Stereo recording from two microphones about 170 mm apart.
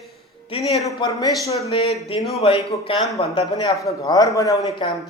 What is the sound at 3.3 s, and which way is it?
Speech, 25° left (ahead or behind).